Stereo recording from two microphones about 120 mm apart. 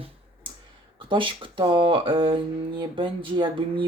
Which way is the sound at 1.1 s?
45° right (ahead or behind).